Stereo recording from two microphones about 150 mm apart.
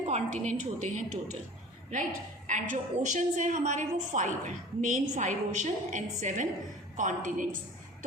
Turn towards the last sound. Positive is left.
turn(degrees=-60)  # may be behind; listen again after turning